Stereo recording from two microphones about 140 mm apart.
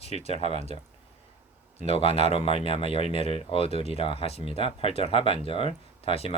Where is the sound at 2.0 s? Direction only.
45° left (ahead or behind).